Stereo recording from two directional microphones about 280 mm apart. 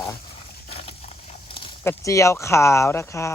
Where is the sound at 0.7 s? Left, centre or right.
Left.